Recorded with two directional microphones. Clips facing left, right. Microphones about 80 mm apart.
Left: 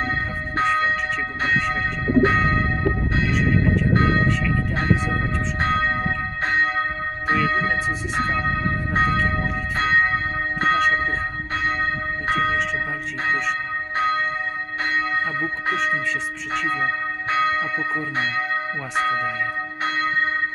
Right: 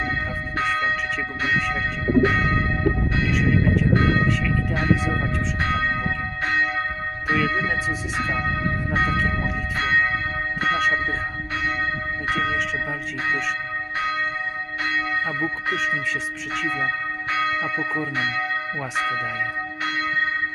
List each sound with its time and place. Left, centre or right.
0.5 s church bell: left
1.4 s speech: left
2.2 s church bell: left
5.5 s church bell: left
7.3 s speech: left
9.7 s church bell: left
11.5 s speech: left
13.9 s church bell: left
16.6 s church bell: left
18.9 s speech: left
19.8 s church bell: left